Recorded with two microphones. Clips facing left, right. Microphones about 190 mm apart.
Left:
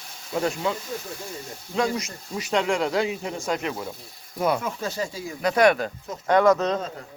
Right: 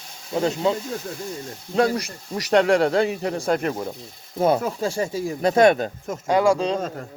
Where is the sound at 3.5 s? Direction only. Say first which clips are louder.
Right 4 dB; 45° right (ahead or behind).